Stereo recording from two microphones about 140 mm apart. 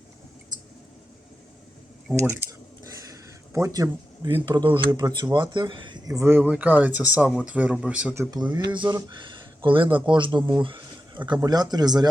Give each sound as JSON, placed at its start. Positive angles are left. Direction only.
{"t": 2.2, "sound": "a sound", "side_deg": -20}
{"t": 4.4, "sound": "speech", "side_deg": -35}
{"t": 8.1, "sound": "speech", "side_deg": -20}
{"t": 8.5, "sound": "speech", "side_deg": -35}